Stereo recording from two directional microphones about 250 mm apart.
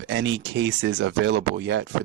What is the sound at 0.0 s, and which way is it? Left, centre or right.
Speech, right.